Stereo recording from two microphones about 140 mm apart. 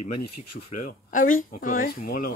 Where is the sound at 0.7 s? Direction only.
70° left (ahead or behind); by 2.3 s 90° left.